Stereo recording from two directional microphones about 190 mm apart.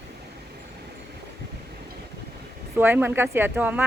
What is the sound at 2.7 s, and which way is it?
Speech, 10° right (ahead or behind).